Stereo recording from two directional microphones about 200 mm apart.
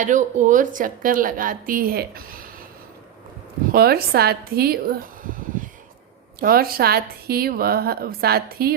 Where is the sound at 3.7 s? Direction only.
50° right (ahead or behind).